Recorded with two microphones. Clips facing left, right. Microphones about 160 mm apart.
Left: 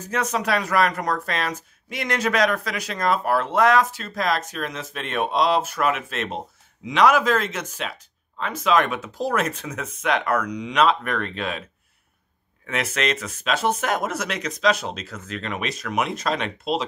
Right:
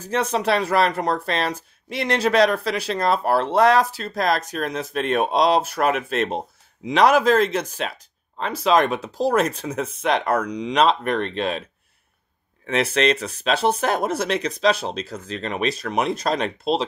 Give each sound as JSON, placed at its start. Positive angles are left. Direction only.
{"t": 0.0, "sound": "speech", "side_deg": -30}
{"t": 12.6, "sound": "speech", "side_deg": -30}